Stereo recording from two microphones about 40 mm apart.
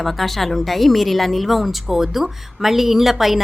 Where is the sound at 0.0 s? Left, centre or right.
Centre.